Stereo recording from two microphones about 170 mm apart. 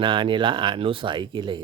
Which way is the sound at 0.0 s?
30° right (ahead or behind).